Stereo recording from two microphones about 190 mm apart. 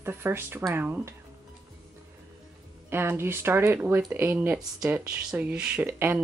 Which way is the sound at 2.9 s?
10° right (ahead or behind).